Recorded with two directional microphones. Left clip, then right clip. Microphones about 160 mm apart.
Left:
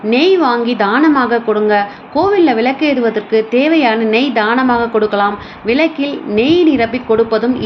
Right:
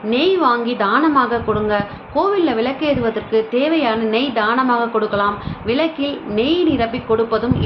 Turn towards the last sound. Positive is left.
turn(degrees=25)  # may be behind; listen again after turning